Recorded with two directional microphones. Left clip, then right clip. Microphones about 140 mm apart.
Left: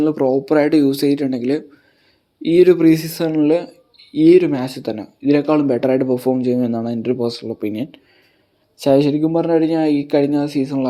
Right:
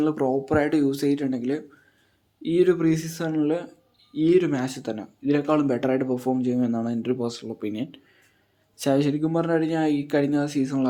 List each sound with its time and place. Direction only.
0.0 s speech: 25° left (ahead or behind)
0.4 s speech: 35° left (ahead or behind)
4.4 s speech: 25° left (ahead or behind)
8.9 s speech: 25° left (ahead or behind)